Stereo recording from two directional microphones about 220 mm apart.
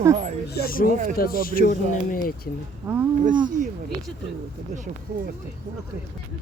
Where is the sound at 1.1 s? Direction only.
40° left (ahead or behind).